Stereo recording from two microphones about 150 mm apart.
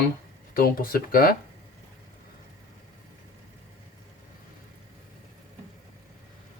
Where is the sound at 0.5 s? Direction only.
75° left (ahead or behind).